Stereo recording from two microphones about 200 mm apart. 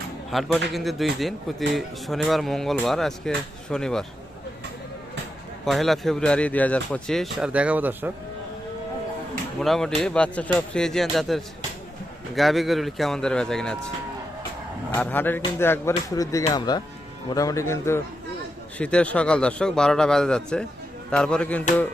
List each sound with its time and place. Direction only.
0.3 s speech: centre (ahead or behind)
5.6 s speech: centre (ahead or behind)
9.6 s speech: centre (ahead or behind)
14.9 s speech: 10° left (ahead or behind)